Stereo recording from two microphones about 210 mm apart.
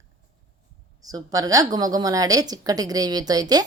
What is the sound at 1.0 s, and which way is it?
Speech, 15° right (ahead or behind).